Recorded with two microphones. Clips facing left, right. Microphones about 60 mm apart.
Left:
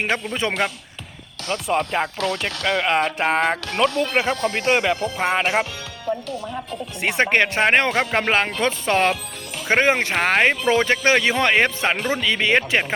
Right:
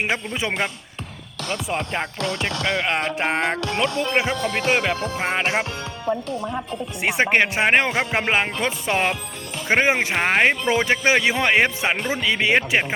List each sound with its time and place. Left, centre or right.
0.0 s speech: centre
1.5 s music: centre
6.1 s speech: right
7.0 s speech: centre